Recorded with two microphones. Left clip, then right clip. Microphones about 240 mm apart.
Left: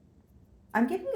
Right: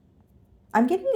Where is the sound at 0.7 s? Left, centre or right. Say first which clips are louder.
Right 7 dB; right.